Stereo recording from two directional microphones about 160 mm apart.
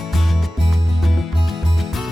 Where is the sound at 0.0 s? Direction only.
Centre (ahead or behind).